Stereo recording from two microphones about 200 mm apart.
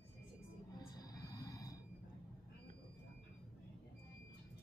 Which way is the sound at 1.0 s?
20° left (ahead or behind).